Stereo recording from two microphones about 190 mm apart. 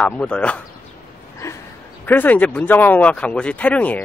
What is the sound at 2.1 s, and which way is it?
Speech, 10° left (ahead or behind).